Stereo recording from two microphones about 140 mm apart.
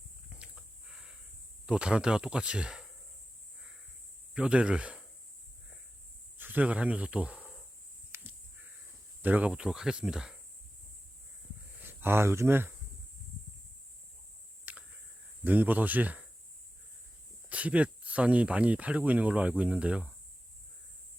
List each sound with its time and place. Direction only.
0.3 s a sound: 5° right (ahead or behind)
1.6 s speech: 5° right (ahead or behind)
4.4 s speech: 5° right (ahead or behind)
6.3 s speech: 15° right (ahead or behind)
8.1 s crow: 20° right (ahead or behind)
9.2 s speech: 10° right (ahead or behind)
11.8 s speech: 15° right (ahead or behind)
14.6 s a sound: 15° right (ahead or behind)
15.4 s speech: 10° right (ahead or behind)
17.5 s speech: 10° right (ahead or behind)